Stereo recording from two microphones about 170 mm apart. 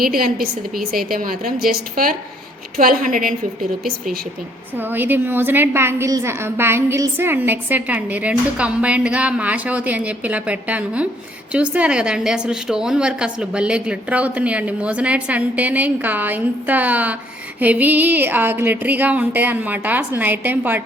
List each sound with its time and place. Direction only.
0.0 s a woman's voice: 60° right (ahead or behind)
4.8 s a woman's voice: 10° right (ahead or behind)